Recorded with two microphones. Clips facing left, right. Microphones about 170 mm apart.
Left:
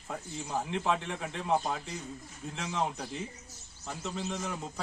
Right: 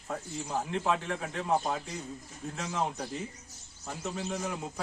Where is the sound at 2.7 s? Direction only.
5° right (ahead or behind).